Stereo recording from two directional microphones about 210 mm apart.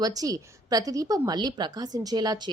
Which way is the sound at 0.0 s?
15° right (ahead or behind).